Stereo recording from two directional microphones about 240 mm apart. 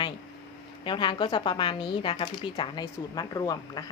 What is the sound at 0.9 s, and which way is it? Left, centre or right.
Speech, centre.